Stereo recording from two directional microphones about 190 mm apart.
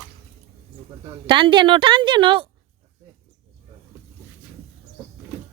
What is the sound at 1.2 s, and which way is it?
A woman's voice, 25° right (ahead or behind).